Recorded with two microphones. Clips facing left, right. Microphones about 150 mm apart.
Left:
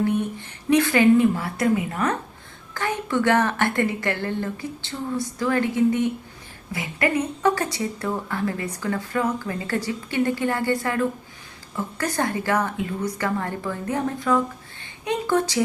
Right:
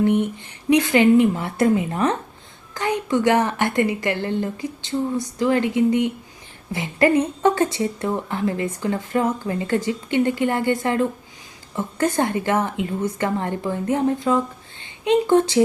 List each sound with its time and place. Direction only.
0.0 s a woman's voice: 20° right (ahead or behind)
6.7 s speech: 30° right (ahead or behind)